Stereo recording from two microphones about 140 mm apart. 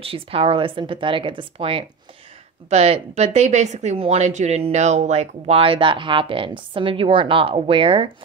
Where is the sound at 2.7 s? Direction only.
50° right (ahead or behind).